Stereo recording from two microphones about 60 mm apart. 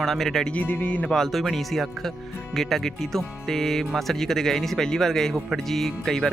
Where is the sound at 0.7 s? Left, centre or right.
Left.